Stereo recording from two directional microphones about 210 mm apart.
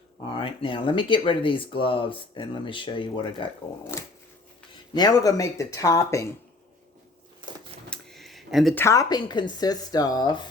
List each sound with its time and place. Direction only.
0.3 s speech: 25° left (ahead or behind)
3.9 s speech: 10° left (ahead or behind)
7.9 s a sound: centre (ahead or behind)
8.7 s speech: 15° left (ahead or behind)